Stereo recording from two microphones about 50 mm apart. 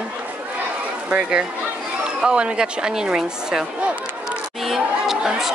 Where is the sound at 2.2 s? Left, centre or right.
Centre.